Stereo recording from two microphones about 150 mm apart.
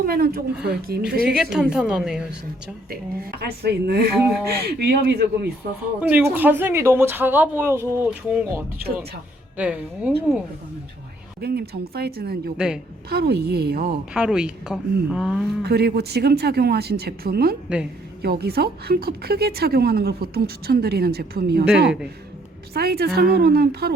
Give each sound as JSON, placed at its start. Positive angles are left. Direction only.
{"t": 0.0, "sound": "speech", "side_deg": -80}
{"t": 1.4, "sound": "speech", "side_deg": -5}
{"t": 2.9, "sound": "speech", "side_deg": -90}
{"t": 4.2, "sound": "speech", "side_deg": -5}
{"t": 4.4, "sound": "speech", "side_deg": -90}
{"t": 6.0, "sound": "speech", "side_deg": -10}
{"t": 11.3, "sound": "speech", "side_deg": -90}
{"t": 12.5, "sound": "speech", "side_deg": -5}
{"t": 13.1, "sound": "speech", "side_deg": -90}
{"t": 14.1, "sound": "speech", "side_deg": -5}
{"t": 15.6, "sound": "speech", "side_deg": -90}
{"t": 22.7, "sound": "speech", "side_deg": -90}